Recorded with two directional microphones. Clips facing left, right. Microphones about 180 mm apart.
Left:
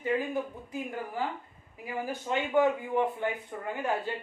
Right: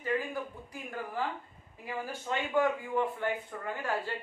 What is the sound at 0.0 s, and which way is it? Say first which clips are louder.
Speech: left 3 dB; 20° left (ahead or behind).